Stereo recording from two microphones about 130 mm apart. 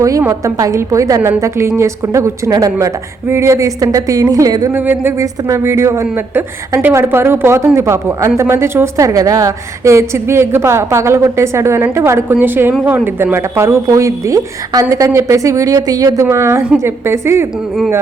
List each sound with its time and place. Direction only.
0.0 s a woman's voice: 25° right (ahead or behind)
4.7 s a woman's voice: 15° right (ahead or behind)